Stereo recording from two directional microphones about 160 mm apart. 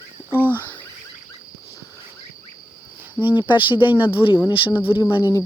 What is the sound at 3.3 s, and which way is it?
Speech, 30° left (ahead or behind).